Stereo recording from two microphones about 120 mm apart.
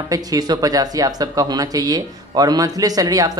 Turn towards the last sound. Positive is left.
turn(degrees=-30)  # may be behind; listen again after turning